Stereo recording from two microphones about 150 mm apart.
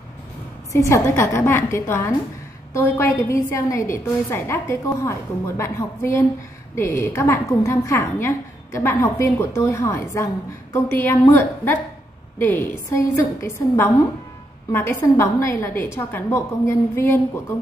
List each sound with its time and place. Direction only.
0.7 s a woman's voice: 20° left (ahead or behind)